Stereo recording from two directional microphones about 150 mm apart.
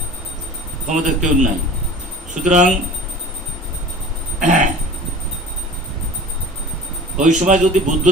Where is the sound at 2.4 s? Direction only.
55° right (ahead or behind).